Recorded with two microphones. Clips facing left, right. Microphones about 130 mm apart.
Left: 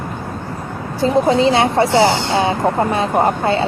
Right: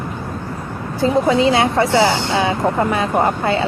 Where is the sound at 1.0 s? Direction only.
30° left (ahead or behind).